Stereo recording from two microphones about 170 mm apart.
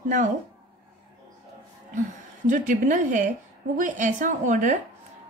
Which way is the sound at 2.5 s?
50° right (ahead or behind).